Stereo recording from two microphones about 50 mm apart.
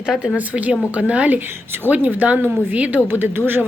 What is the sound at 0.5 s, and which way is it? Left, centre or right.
A woman's voice, right.